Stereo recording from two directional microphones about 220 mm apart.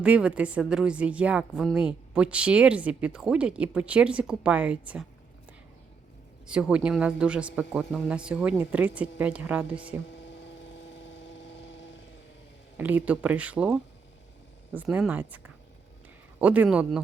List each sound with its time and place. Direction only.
0.0 s speech: 5° right (ahead or behind)
6.5 s speech: 5° right (ahead or behind)
11.1 s a sound: 55° left (ahead or behind)
12.7 s speech: 10° right (ahead or behind)
16.4 s speech: 5° right (ahead or behind)